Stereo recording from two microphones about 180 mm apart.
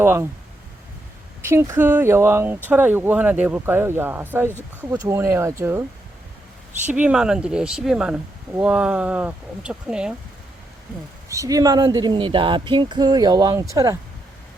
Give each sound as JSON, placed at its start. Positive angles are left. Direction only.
{"t": 0.0, "sound": "speech", "side_deg": -15}
{"t": 1.5, "sound": "speech", "side_deg": -15}
{"t": 6.8, "sound": "speech", "side_deg": -10}
{"t": 11.3, "sound": "speech", "side_deg": -20}